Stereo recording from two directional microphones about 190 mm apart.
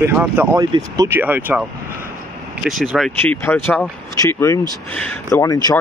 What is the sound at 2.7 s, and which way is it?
Speech, centre (ahead or behind).